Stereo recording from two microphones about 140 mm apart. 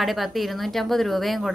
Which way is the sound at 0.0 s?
Centre (ahead or behind).